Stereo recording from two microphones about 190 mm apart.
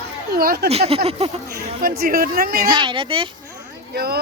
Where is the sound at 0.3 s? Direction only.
55° right (ahead or behind).